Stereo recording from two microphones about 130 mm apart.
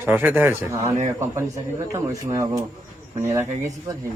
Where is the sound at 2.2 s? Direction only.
25° right (ahead or behind).